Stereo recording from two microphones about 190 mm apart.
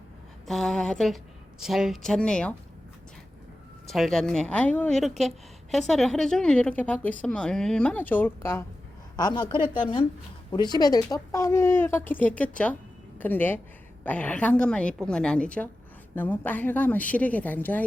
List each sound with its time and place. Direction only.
0.4 s a woman's voice: centre (ahead or behind)
3.9 s a woman's voice: centre (ahead or behind)